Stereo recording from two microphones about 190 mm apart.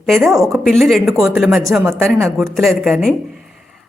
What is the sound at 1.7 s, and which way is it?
Speech, 10° right (ahead or behind).